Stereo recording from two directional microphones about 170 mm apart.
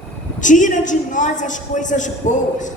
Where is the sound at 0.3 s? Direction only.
50° left (ahead or behind).